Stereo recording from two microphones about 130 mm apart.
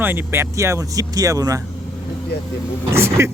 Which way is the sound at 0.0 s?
15° right (ahead or behind).